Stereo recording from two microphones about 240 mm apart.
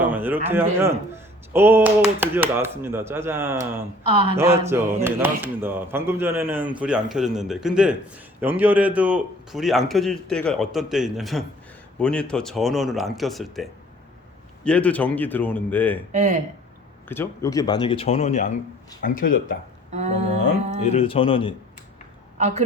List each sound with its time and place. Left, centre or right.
0.0 s a sound: centre
0.4 s a man's voice: centre
16.1 s speech: right
17.1 s speech: centre; by 19.5 s left
19.9 s a sound: right
20.8 s speech: left
22.4 s a woman's voice: right